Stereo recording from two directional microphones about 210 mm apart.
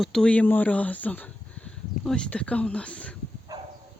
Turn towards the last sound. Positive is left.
turn(degrees=-15)  # may be behind; listen again after turning